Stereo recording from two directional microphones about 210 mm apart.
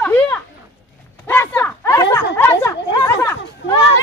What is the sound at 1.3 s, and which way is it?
Speech, 10° left (ahead or behind).